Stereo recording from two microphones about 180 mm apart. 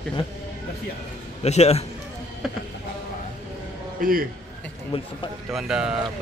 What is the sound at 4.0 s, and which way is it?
Speech, 50° right (ahead or behind).